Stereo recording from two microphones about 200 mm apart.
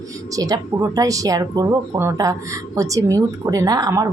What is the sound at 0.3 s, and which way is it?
Speech, 20° right (ahead or behind).